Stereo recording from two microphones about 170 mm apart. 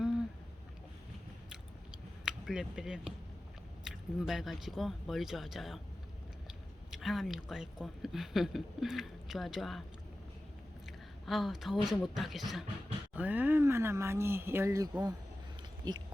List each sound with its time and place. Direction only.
2.2 s speech: 5° right (ahead or behind)
6.9 s speech: centre (ahead or behind)
11.3 s speech: centre (ahead or behind); by 16.0 s 25° right (ahead or behind)